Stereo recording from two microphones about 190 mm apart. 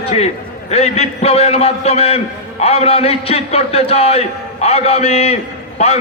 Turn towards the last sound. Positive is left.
turn(degrees=35)  # may be behind; listen again after turning